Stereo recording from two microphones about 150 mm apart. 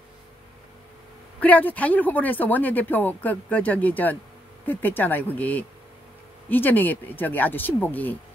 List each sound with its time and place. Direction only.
1.4 s speech: 10° left (ahead or behind)